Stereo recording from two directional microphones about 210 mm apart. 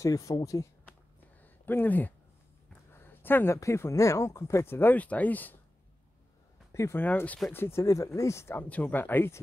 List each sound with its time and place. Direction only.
0.0 s speech: 15° left (ahead or behind)
1.4 s a sound: 10° left (ahead or behind)
2.9 s speech: 10° left (ahead or behind)
6.7 s speech: 15° left (ahead or behind)